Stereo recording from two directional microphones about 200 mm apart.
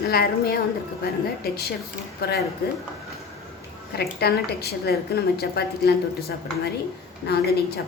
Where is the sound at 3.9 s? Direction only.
50° left (ahead or behind).